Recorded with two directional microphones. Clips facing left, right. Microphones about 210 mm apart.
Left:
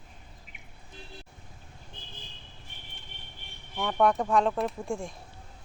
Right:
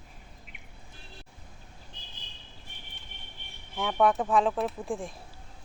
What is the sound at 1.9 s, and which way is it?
Vehicle, 50° left (ahead or behind).